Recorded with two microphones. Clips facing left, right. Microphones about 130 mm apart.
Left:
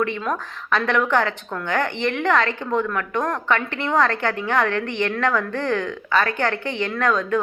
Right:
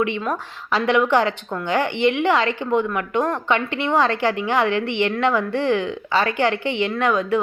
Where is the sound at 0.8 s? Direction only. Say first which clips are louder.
Right 3 dB; 10° right (ahead or behind).